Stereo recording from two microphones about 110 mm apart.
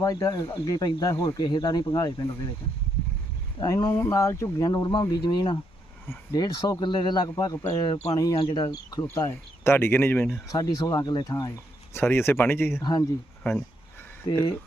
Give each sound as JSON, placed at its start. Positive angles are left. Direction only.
{"t": 0.0, "sound": "speech", "side_deg": 35}
{"t": 3.6, "sound": "speech", "side_deg": 35}
{"t": 8.4, "sound": "speech", "side_deg": 55}
{"t": 8.6, "sound": "speech", "side_deg": 35}
{"t": 10.5, "sound": "speech", "side_deg": 35}
{"t": 11.9, "sound": "speech", "side_deg": 20}
{"t": 12.8, "sound": "speech", "side_deg": 40}
{"t": 13.5, "sound": "speech", "side_deg": 20}
{"t": 14.3, "sound": "speech", "side_deg": 50}